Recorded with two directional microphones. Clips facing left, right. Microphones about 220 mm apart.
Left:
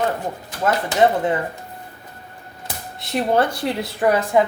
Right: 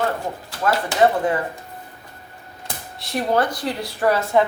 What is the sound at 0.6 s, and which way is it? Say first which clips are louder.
Speech: left 1 dB; 20° left (ahead or behind).